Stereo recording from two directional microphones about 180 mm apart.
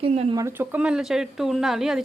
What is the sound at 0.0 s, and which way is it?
Speech, 35° right (ahead or behind).